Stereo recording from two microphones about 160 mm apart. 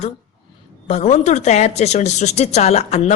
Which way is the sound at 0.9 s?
45° left (ahead or behind).